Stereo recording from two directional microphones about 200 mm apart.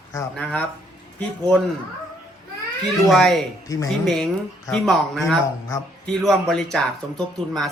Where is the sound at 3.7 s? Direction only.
15° left (ahead or behind).